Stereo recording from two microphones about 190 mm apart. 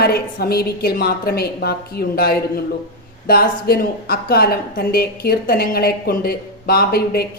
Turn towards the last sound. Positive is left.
turn(degrees=55)  # may be behind; listen again after turning